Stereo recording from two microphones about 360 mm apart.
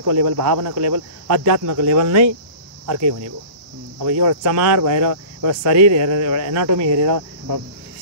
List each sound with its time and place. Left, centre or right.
0.0 s speech: right